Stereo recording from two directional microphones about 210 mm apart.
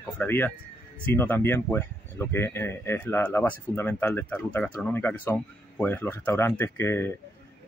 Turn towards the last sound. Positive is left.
turn(degrees=10)  # may be behind; listen again after turning